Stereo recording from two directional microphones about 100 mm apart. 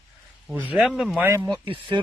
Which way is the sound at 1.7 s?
55° right (ahead or behind).